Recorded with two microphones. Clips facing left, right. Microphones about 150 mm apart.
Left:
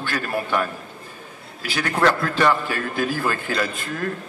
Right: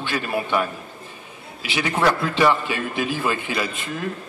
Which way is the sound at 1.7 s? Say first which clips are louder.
Even; 10° right (ahead or behind).